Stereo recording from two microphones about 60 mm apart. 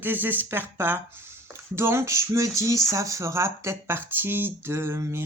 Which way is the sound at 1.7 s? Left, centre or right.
Right.